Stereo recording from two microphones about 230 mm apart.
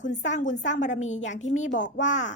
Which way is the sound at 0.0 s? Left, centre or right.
Left.